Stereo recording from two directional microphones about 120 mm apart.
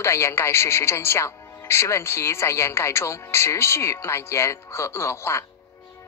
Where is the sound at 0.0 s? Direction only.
20° left (ahead or behind).